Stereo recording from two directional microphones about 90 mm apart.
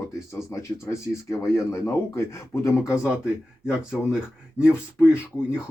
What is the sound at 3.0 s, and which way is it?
Speech, 10° right (ahead or behind).